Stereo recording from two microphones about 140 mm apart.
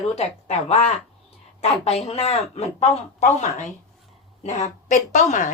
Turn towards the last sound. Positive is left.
turn(degrees=65)  # may be behind; listen again after turning